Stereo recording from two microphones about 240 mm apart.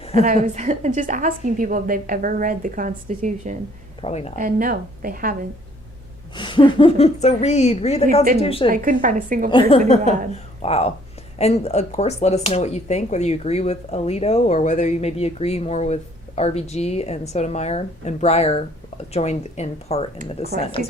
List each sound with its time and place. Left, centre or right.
0.2 s a woman's voice: right
4.0 s speech: left
4.4 s a woman's voice: right
6.3 s speech: centre
8.7 s a woman's voice: right
9.5 s speech: left